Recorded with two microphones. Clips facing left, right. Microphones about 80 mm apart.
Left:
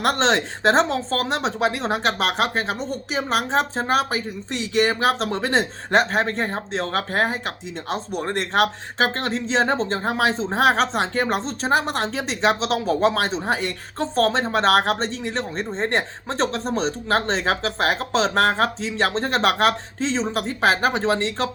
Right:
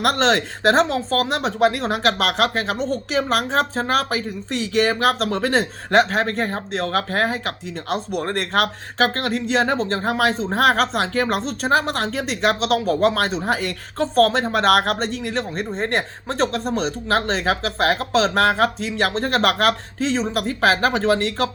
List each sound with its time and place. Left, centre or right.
0.0 s speech: left
1.5 s speech: right
2.2 s speech: left
10.2 s speech: right
11.1 s speech: left
12.1 s speech: right
13.1 s speech: left
14.0 s speech: right
14.3 s speech: left